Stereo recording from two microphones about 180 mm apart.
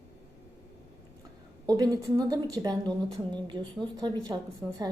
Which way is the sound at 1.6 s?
20° right (ahead or behind).